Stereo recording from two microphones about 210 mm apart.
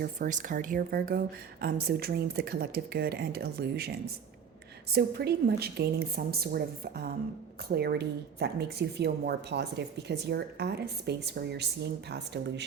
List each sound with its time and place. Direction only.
0.0 s speech: 40° right (ahead or behind); by 12.6 s 55° right (ahead or behind)